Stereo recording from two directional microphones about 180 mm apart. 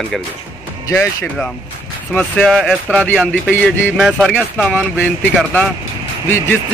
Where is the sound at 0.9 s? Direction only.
15° left (ahead or behind).